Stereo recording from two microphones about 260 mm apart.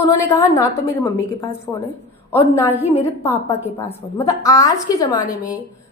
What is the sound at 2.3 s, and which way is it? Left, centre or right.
A woman's voice, centre.